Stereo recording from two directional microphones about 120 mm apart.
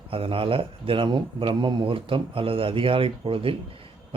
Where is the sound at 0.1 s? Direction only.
50° right (ahead or behind).